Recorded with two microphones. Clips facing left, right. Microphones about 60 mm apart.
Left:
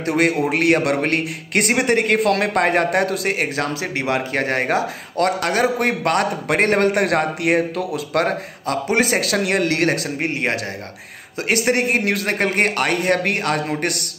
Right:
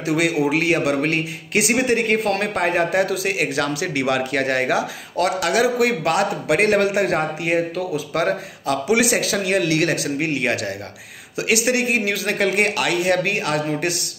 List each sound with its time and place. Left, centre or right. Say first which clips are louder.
0.0 s a man's voice: left 1 dB; left